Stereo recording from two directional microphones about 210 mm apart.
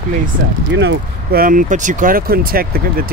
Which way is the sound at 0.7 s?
55° right (ahead or behind).